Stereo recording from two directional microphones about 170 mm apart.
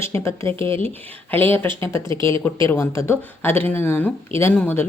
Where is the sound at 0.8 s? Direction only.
10° left (ahead or behind).